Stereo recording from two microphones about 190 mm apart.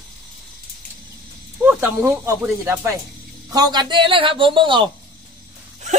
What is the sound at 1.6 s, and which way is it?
Speech, 10° right (ahead or behind).